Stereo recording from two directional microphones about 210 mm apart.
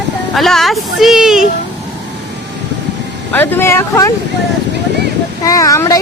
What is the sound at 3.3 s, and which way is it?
Speech, 10° left (ahead or behind).